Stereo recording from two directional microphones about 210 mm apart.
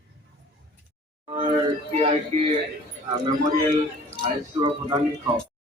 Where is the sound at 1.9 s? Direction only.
30° right (ahead or behind).